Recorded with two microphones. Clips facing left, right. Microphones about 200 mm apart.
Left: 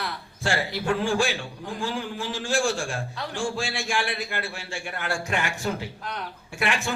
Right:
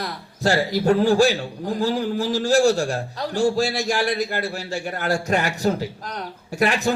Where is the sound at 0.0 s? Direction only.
40° right (ahead or behind).